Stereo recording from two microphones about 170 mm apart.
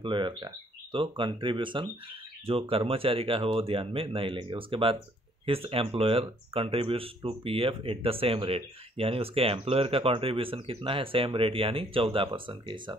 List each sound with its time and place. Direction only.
0.0 s speech: 30° right (ahead or behind)